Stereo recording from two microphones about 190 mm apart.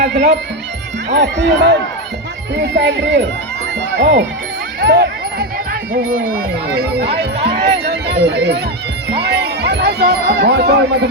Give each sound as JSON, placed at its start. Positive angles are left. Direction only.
{"t": 0.0, "sound": "speech", "side_deg": -60}
{"t": 4.8, "sound": "speech", "side_deg": -60}
{"t": 5.9, "sound": "speech", "side_deg": -50}
{"t": 7.3, "sound": "speech", "side_deg": -30}
{"t": 7.6, "sound": "speech", "side_deg": -60}